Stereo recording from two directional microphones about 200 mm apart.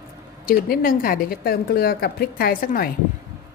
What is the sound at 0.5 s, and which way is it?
A woman's voice, 45° left (ahead or behind).